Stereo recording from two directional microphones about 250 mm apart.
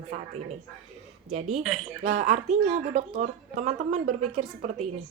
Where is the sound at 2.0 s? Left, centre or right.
Right.